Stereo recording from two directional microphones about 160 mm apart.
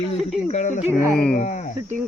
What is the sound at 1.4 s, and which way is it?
Speech, 50° left (ahead or behind).